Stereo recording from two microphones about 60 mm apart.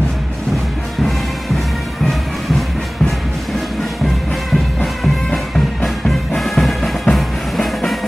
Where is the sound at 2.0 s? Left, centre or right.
Centre.